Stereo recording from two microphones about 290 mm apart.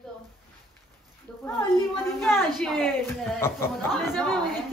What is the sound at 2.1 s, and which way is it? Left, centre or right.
Speech, centre.